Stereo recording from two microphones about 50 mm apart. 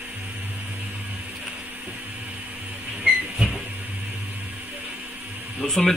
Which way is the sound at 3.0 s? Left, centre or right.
Centre.